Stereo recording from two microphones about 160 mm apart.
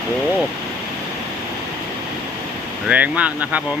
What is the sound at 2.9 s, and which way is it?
Speech, 10° right (ahead or behind).